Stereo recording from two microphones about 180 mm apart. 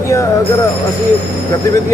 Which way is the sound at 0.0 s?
15° left (ahead or behind).